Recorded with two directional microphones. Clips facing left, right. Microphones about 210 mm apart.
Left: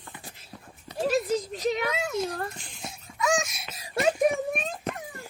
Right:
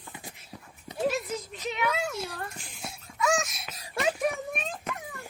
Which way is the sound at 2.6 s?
5° right (ahead or behind).